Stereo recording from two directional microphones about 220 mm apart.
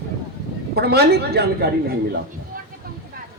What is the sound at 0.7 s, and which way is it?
A man's voice, 45° right (ahead or behind).